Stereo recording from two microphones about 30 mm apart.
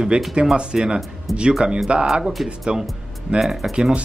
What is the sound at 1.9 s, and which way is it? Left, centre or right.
Speech, right.